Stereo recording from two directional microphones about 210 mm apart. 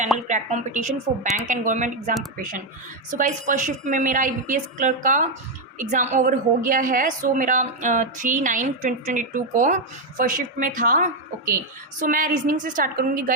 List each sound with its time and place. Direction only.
0.3 s a woman's voice: 35° right (ahead or behind)